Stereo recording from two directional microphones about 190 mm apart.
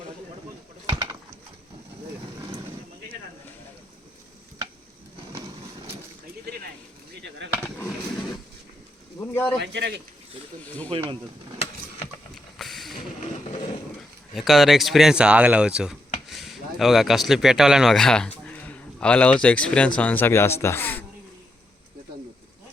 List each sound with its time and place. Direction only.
7.2 s chop: 65° right (ahead or behind)
9.1 s a sound: 15° left (ahead or behind)
9.6 s a man's voice: 60° right (ahead or behind)
10.9 s speech: 30° right (ahead or behind)
12.3 s vehicle: centre (ahead or behind)
13.2 s vehicle: 25° left (ahead or behind)
14.3 s speech: centre (ahead or behind)